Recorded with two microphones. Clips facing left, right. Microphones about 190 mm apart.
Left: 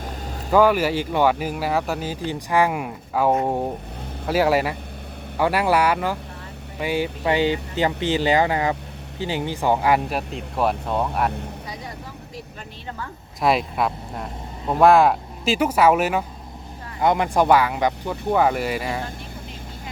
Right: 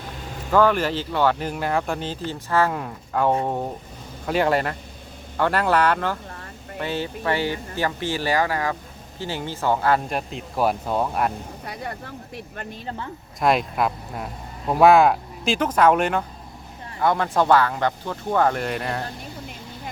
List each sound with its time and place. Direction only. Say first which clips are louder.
0.5 s speech: left 2 dB; 10° left (ahead or behind)
4.3 s speech: left 2 dB; 5° left (ahead or behind)
10.2 s speech: even; centre (ahead or behind)
11.6 s vehicle: right 2 dB; 60° right (ahead or behind)
13.4 s speech: even; centre (ahead or behind)
17.0 s speech: left 2 dB; 15° left (ahead or behind)